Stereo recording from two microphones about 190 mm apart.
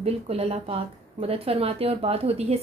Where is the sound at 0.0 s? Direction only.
30° right (ahead or behind).